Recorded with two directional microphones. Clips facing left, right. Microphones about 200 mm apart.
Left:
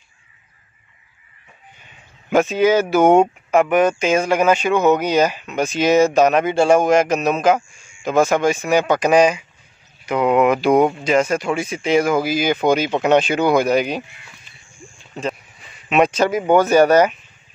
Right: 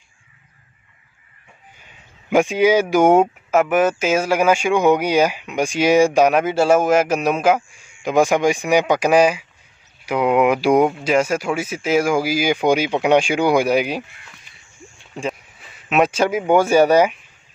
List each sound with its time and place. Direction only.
2.2 s speech: 10° right (ahead or behind)
15.9 s speech: 5° right (ahead or behind)